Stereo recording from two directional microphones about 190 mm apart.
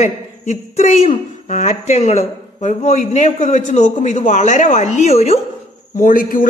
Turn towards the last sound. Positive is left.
turn(degrees=45)  # may be behind; listen again after turning